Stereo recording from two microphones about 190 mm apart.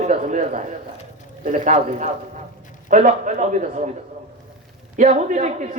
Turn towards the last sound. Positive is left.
turn(degrees=-40)  # may be behind; listen again after turning